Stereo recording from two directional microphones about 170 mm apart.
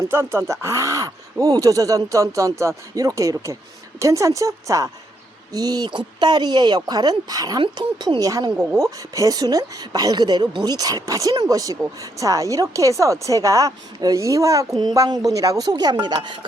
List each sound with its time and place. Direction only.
0.1 s speech: 15° right (ahead or behind)